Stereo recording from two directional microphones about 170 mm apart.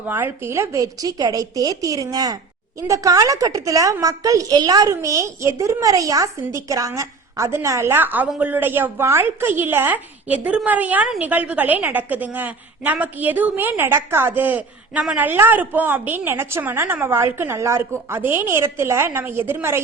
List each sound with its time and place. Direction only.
0.0 s a woman's voice: 10° right (ahead or behind)